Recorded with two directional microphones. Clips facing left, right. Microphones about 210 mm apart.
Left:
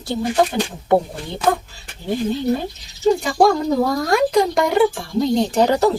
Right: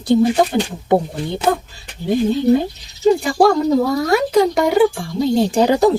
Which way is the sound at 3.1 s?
5° right (ahead or behind).